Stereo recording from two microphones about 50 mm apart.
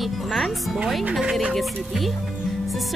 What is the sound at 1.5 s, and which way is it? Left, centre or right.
Speech, centre.